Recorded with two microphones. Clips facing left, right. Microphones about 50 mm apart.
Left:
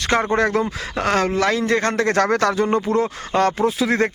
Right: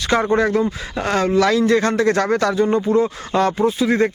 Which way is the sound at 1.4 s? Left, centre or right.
Left.